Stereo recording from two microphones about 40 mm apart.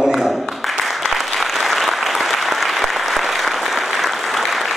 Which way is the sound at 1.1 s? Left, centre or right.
Centre.